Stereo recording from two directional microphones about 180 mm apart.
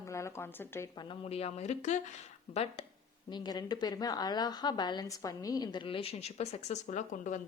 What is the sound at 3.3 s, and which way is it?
Speech, 25° left (ahead or behind).